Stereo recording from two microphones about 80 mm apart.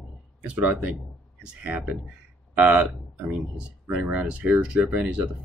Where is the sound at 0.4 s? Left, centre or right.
Centre.